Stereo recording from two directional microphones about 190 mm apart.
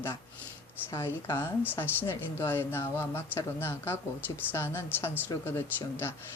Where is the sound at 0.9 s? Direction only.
15° left (ahead or behind).